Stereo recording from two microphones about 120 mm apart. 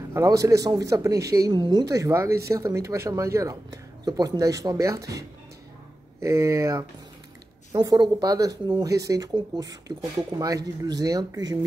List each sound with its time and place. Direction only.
0.1 s speech: 25° right (ahead or behind)
1.5 s speech: 35° right (ahead or behind)
6.2 s speech: 25° right (ahead or behind)